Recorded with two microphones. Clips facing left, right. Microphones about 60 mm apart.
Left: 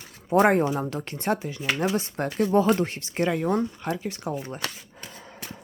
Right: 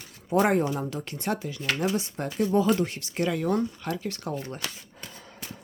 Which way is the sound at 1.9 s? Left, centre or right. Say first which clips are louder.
Left 3 dB; left.